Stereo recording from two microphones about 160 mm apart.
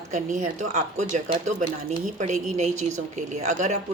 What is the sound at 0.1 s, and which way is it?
Speech, 50° right (ahead or behind).